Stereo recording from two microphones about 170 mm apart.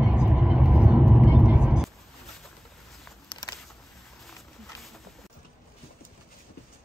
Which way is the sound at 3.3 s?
25° left (ahead or behind).